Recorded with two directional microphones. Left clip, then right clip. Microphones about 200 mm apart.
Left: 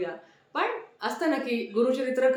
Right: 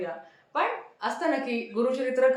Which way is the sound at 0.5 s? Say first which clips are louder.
Right 1 dB; 15° left (ahead or behind).